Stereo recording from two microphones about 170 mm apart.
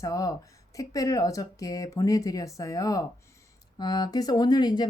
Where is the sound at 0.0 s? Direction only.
20° left (ahead or behind).